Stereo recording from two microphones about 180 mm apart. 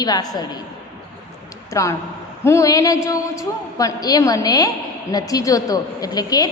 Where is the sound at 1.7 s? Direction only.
15° left (ahead or behind).